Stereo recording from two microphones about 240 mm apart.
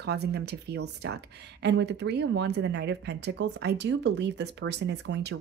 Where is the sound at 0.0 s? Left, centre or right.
Right.